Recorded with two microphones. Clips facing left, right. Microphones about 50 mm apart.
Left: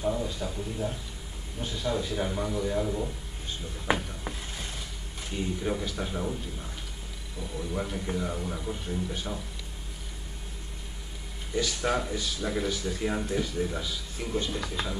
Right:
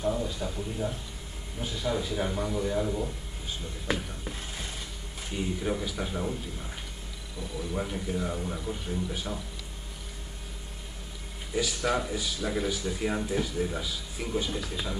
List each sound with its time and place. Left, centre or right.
0.0 s a man's voice: centre
3.8 s speech: centre
5.3 s speech: centre
7.7 s speech: centre
11.8 s speech: centre